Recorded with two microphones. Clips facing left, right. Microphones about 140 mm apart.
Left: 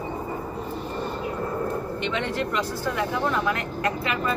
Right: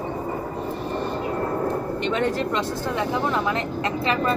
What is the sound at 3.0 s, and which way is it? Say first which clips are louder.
Speech: right 1 dB; 25° right (ahead or behind).